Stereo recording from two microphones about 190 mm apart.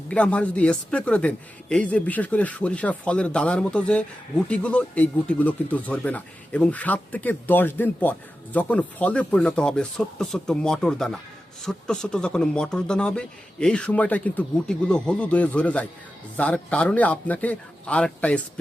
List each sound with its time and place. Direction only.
0.1 s speech: 5° left (ahead or behind)